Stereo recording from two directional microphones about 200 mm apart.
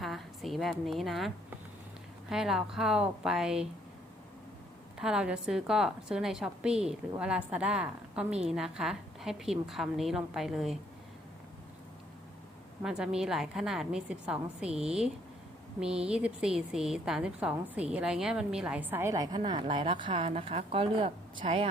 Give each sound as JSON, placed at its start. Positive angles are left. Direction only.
{"t": 0.0, "sound": "a woman's voice", "side_deg": 0}
{"t": 4.9, "sound": "a woman's voice", "side_deg": -5}
{"t": 12.8, "sound": "a woman's voice", "side_deg": -5}